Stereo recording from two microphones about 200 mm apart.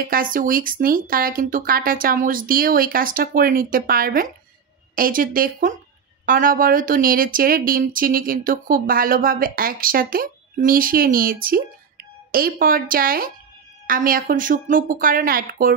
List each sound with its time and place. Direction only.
0.1 s speech: 45° right (ahead or behind)